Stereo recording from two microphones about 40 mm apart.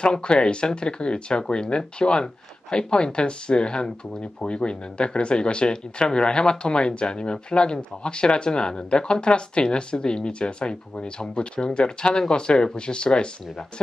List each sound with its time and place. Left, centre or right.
0.0 s speech: left